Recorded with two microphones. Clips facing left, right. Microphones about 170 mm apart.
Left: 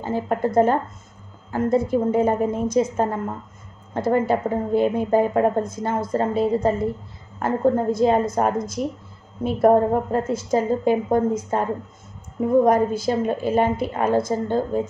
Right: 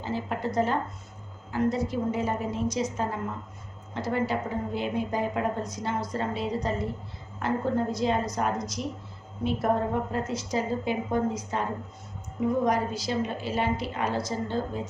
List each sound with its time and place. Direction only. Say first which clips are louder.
0.0 s a woman's voice: left 7 dB; 50° left (ahead or behind)
12.6 s a woman's voice: left 8 dB; 50° left (ahead or behind)